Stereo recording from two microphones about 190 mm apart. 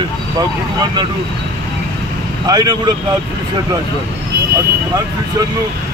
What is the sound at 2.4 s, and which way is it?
Speech, 20° right (ahead or behind).